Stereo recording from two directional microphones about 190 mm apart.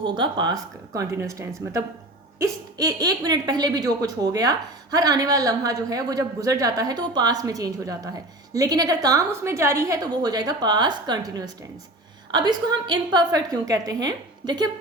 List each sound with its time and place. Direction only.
0.0 s speech: 25° right (ahead or behind)